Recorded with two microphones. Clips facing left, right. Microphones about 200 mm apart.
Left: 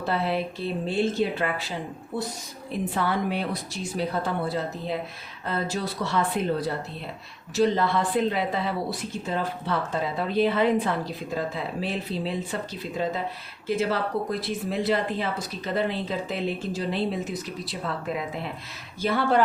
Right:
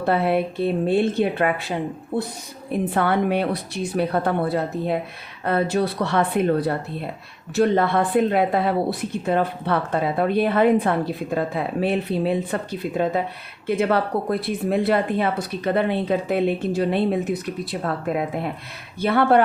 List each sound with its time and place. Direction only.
0.0 s speech: 55° right (ahead or behind)